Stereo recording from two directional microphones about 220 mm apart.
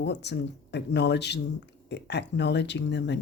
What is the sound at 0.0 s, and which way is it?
Speech, 50° left (ahead or behind).